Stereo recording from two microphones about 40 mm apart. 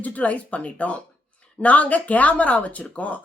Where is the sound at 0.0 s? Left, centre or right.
Left.